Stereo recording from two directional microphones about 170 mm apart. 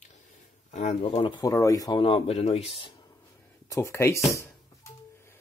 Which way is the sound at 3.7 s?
15° left (ahead or behind).